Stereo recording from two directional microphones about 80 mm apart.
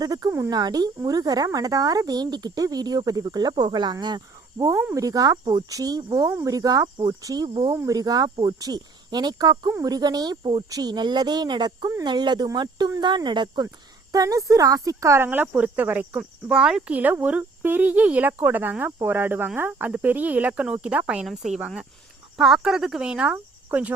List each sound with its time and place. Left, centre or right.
0.0 s a woman's voice: right
0.5 s a woman's voice: right
4.9 s a woman's voice: right
7.8 s a woman's voice: right
10.7 s speech: right
14.1 s a woman's voice: right
15.3 s speech: right
16.5 s speech: centre